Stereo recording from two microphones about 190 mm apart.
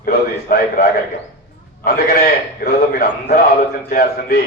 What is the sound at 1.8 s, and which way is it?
A man's voice, 55° left (ahead or behind).